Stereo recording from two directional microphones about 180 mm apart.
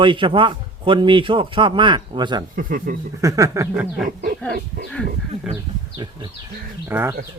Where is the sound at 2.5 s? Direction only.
50° right (ahead or behind).